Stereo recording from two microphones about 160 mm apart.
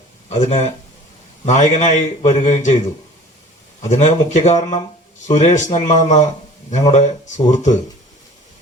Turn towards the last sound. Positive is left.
turn(degrees=45)  # may be behind; listen again after turning